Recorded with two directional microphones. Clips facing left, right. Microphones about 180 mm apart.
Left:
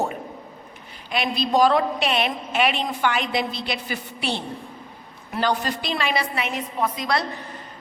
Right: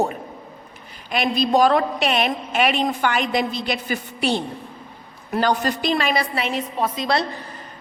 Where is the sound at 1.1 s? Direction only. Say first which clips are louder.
Right 3 dB; 45° right (ahead or behind); by 7.2 s 25° right (ahead or behind).